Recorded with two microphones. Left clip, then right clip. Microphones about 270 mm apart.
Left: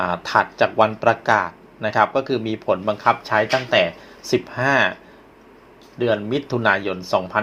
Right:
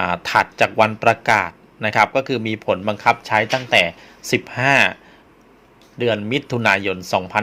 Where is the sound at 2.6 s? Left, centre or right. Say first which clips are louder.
Right 1 dB; right.